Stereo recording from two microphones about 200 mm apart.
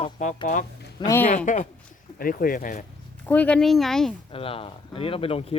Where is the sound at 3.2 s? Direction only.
10° left (ahead or behind).